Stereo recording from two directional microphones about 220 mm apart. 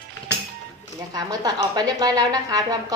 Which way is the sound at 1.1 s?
15° right (ahead or behind).